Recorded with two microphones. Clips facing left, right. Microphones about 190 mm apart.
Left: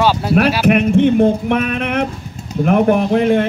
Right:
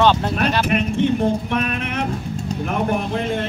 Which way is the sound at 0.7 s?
60° left (ahead or behind).